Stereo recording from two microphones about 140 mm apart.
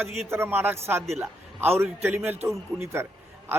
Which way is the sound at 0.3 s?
15° right (ahead or behind).